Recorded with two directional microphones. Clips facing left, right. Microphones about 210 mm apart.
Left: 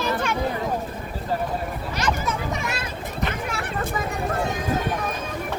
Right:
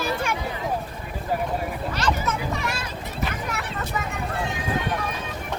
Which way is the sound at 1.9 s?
10° left (ahead or behind).